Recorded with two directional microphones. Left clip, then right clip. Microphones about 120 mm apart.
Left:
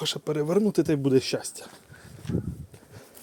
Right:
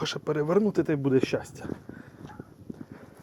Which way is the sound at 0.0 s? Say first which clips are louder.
Left 1 dB; 35° left (ahead or behind).